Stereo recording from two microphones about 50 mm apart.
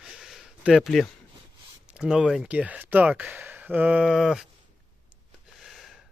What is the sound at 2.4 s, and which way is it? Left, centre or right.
Speech, right.